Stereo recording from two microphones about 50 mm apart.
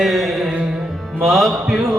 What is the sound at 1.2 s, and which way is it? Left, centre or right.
Music, centre.